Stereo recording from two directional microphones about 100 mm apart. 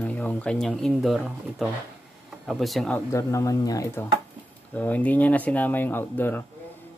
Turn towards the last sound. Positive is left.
turn(degrees=20)  # may be behind; listen again after turning